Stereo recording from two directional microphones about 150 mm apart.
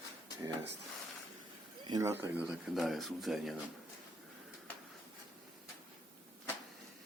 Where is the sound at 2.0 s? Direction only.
15° right (ahead or behind); by 3.5 s centre (ahead or behind).